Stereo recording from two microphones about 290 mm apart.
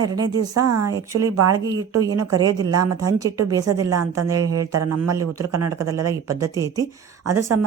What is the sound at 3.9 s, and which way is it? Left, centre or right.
Speech, right.